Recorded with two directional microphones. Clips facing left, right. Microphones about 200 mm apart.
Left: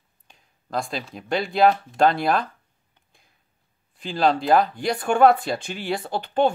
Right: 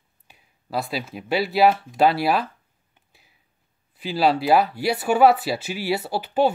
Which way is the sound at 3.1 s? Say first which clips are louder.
Right 1 dB; 5° right (ahead or behind).